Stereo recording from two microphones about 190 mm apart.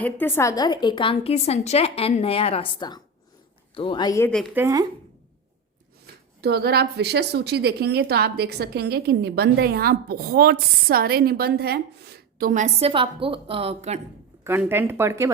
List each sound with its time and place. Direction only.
0.0 s a woman's voice: 10° left (ahead or behind)
4.5 s a woman's voice: 15° right (ahead or behind)
6.4 s a woman's voice: 60° right (ahead or behind); by 14.0 s 35° right (ahead or behind)
14.4 s a woman's voice: 10° right (ahead or behind)